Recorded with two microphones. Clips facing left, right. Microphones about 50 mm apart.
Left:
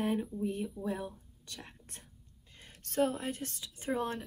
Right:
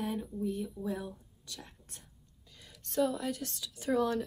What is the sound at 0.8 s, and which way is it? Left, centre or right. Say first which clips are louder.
Speech: even; centre.